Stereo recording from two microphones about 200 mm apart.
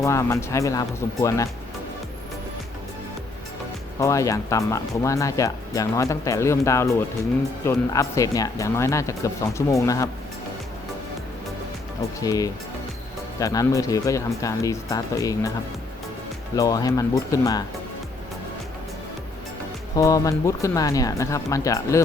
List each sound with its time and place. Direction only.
0.0 s speech: 15° left (ahead or behind)
4.0 s speech: 15° left (ahead or behind)
12.2 s speech: 15° left (ahead or behind)
16.6 s speech: 20° left (ahead or behind)
20.0 s speech: 15° left (ahead or behind)